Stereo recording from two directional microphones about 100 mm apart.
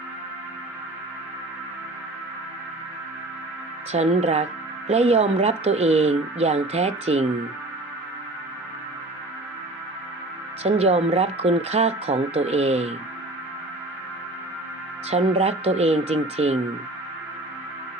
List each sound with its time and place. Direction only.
3.9 s speech: 90° right
10.6 s speech: 90° right
15.1 s speech: 90° right